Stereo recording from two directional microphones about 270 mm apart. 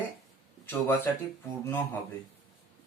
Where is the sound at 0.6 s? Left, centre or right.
Centre.